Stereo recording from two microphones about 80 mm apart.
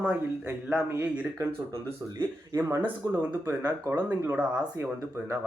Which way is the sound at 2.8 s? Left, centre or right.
Right.